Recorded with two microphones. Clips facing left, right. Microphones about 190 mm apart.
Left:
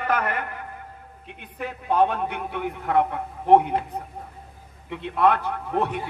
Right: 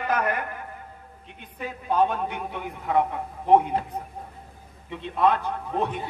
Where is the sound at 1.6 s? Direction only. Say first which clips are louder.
Left 2 dB; 60° left (ahead or behind).